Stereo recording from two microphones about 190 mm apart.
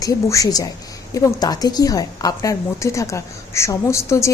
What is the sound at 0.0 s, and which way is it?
A woman's voice, 15° left (ahead or behind).